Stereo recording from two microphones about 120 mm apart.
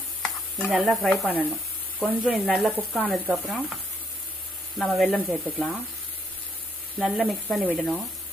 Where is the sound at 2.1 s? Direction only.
5° right (ahead or behind).